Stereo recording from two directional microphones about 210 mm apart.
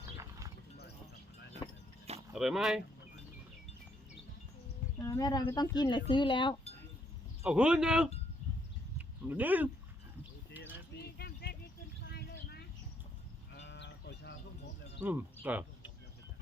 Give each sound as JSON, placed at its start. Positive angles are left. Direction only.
{"t": 0.2, "sound": "horse", "side_deg": -15}
{"t": 2.3, "sound": "speech", "side_deg": 0}
{"t": 4.9, "sound": "speech", "side_deg": 15}
{"t": 7.4, "sound": "speech", "side_deg": -5}
{"t": 9.0, "sound": "a sound", "side_deg": -10}
{"t": 10.9, "sound": "a sound", "side_deg": 50}
{"t": 12.0, "sound": "vehicle", "side_deg": 50}
{"t": 13.6, "sound": "livestock", "side_deg": 55}
{"t": 15.0, "sound": "speech", "side_deg": -10}